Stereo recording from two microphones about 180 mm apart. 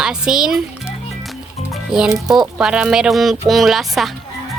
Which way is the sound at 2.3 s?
Centre (ahead or behind).